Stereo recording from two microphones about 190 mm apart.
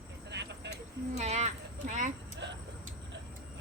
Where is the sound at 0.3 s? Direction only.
65° right (ahead or behind).